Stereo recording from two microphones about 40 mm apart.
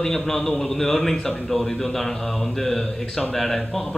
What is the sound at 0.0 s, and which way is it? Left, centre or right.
Speech, centre.